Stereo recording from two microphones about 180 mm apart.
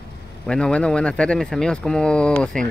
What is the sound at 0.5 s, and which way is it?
Speech, 5° left (ahead or behind).